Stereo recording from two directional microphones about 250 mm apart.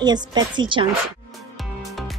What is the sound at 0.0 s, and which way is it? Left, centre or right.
Speech, centre.